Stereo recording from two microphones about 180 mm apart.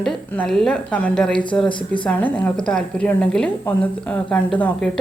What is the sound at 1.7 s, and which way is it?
Speech, 25° left (ahead or behind).